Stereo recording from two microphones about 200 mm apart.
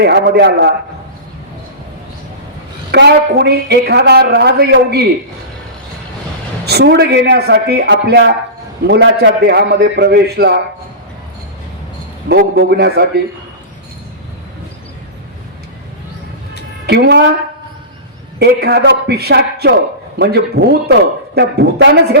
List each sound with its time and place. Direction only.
0.0 s a woman's voice: 55° right (ahead or behind)
2.9 s a woman's voice: 55° right (ahead or behind)
6.7 s a woman's voice: 55° right (ahead or behind)
12.3 s a woman's voice: 55° right (ahead or behind)
16.8 s a woman's voice: 55° right (ahead or behind)
18.3 s a woman's voice: 55° right (ahead or behind)